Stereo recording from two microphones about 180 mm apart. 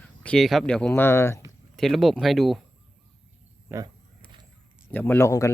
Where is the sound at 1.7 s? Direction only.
Centre (ahead or behind).